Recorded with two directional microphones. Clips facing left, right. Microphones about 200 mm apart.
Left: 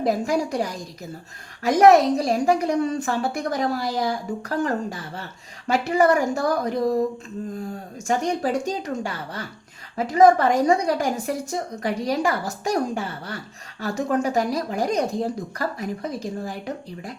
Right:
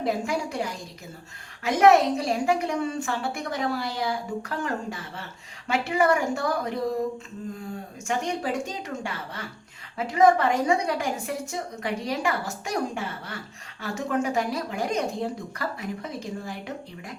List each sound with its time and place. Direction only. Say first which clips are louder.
0.0 s a woman's voice: left 5 dB; 40° left (ahead or behind)
8.0 s a woman's voice: left 5 dB; 40° left (ahead or behind)